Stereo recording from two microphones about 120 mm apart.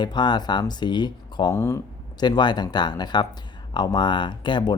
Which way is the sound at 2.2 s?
40° left (ahead or behind).